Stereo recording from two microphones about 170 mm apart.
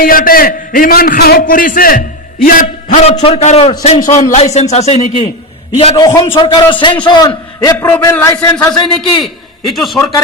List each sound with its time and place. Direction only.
0.0 s a man's voice: 55° left (ahead or behind)
3.0 s a man's voice: 40° left (ahead or behind)
6.0 s a man's voice: 20° left (ahead or behind)
7.8 s a man's voice: 15° left (ahead or behind)
9.7 s a man's voice: centre (ahead or behind)